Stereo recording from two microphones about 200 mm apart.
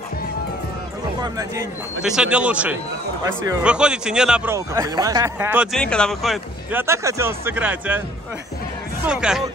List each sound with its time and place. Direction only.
1.2 s speech: 15° right (ahead or behind)
2.0 s a man's voice: 5° right (ahead or behind)
4.6 s speech: 15° right (ahead or behind)
5.8 s a man's voice: 5° left (ahead or behind)
6.8 s speech: 15° right (ahead or behind)
9.0 s a man's voice: 5° right (ahead or behind)